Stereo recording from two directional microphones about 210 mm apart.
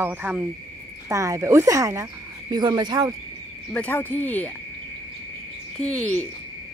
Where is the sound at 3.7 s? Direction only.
5° left (ahead or behind).